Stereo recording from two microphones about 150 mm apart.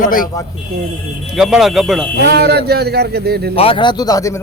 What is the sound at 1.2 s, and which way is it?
Speech, 5° right (ahead or behind).